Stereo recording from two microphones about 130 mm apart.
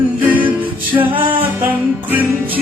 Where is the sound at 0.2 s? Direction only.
15° right (ahead or behind).